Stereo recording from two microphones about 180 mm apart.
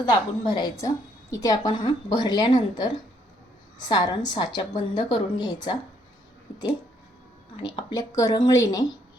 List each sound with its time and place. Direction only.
0.0 s a woman's voice: 25° left (ahead or behind)
7.5 s a woman's voice: 25° left (ahead or behind)